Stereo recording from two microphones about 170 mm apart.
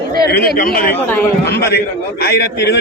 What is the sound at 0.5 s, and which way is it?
Speech, 55° left (ahead or behind).